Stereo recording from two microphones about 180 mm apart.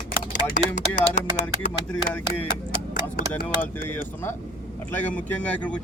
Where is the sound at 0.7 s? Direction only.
40° left (ahead or behind).